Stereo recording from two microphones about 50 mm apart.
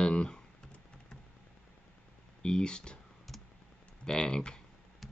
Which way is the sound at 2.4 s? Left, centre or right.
Centre.